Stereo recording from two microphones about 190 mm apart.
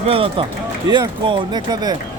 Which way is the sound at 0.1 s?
30° right (ahead or behind).